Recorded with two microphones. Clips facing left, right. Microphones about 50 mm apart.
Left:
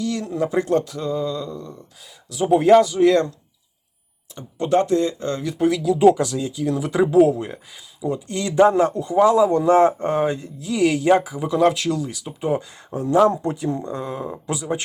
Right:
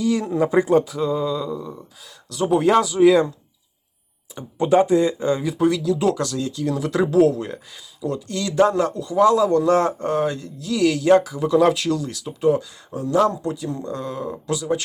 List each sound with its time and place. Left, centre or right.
0.0 s speech: centre
2.3 s speech: centre
4.4 s speech: centre
5.6 s speech: centre
8.3 s speech: left
11.5 s speech: centre
12.5 s speech: left